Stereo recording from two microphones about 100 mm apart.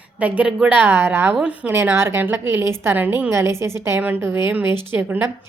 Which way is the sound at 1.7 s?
25° right (ahead or behind).